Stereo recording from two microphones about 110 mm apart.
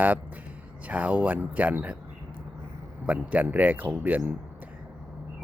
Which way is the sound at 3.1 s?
15° right (ahead or behind).